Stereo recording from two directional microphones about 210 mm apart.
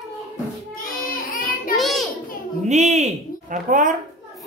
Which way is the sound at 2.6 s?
35° right (ahead or behind).